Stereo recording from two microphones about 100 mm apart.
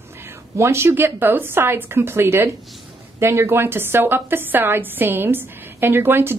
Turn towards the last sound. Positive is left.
turn(degrees=-20)  # may be behind; listen again after turning